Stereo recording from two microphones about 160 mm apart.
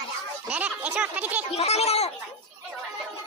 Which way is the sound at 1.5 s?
40° left (ahead or behind).